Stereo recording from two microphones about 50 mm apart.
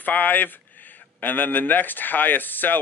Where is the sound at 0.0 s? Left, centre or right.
Left.